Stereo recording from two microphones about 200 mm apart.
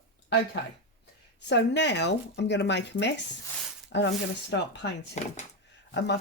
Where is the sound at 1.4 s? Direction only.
60° left (ahead or behind).